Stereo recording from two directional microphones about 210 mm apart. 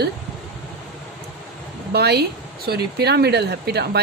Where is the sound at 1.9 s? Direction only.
50° right (ahead or behind).